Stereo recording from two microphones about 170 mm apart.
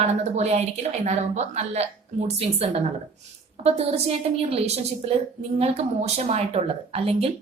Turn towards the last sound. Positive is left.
turn(degrees=-35)  # may be behind; listen again after turning